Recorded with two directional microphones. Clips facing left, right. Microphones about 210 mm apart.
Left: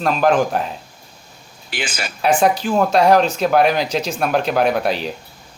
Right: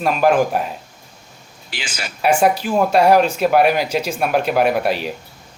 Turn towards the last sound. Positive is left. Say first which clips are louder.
# even
turn(degrees=-5)  # may be behind; listen again after turning